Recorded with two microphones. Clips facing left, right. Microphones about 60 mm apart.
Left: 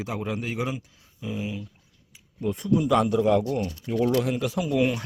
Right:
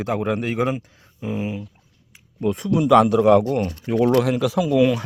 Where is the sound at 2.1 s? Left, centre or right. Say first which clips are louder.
Right 6 dB; right.